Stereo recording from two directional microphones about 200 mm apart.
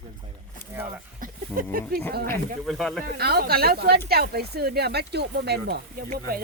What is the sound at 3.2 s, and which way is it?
Speech, 50° right (ahead or behind).